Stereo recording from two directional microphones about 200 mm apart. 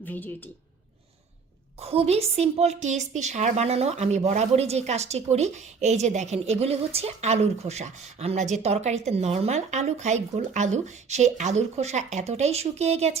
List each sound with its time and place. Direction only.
0.0 s speech: 10° left (ahead or behind)
1.8 s a woman's voice: 30° right (ahead or behind)